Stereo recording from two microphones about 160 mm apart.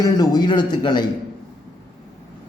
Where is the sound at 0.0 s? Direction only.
25° left (ahead or behind).